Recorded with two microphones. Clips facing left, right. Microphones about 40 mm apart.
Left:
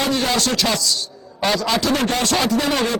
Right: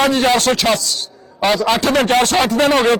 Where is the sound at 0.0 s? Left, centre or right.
Right.